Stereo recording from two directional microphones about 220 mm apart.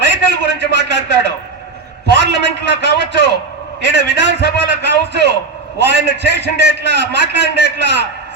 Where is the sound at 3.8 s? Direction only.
50° right (ahead or behind).